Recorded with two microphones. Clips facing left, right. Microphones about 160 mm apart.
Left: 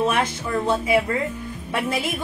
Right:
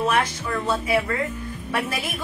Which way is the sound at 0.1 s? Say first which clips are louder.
Left 1 dB; 25° left (ahead or behind).